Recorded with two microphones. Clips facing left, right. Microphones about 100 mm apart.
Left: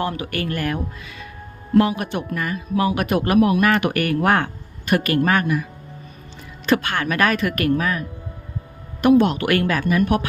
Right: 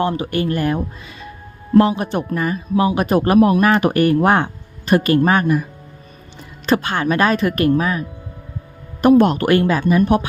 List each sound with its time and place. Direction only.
0.0 s speech: 25° right (ahead or behind)
6.7 s speech: 30° right (ahead or behind)
9.1 s speech: 40° right (ahead or behind)
9.5 s speech: 25° right (ahead or behind)